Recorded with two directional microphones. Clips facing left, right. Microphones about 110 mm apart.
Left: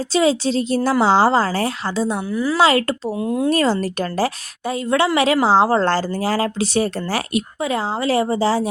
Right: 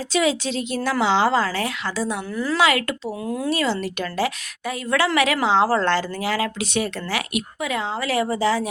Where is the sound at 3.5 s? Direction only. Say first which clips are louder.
Left 4 dB; 40° left (ahead or behind).